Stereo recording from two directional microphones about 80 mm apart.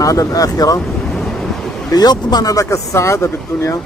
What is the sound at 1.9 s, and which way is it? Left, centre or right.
Speech, left.